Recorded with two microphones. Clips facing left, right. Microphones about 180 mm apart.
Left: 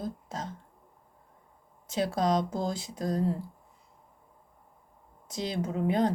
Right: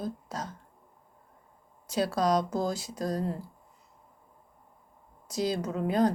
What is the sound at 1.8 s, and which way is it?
Speech, 25° left (ahead or behind).